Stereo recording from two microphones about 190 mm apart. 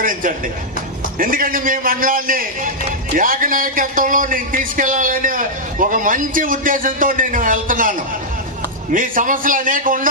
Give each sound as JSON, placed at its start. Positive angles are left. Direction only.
{"t": 0.0, "sound": "a man's voice", "side_deg": -45}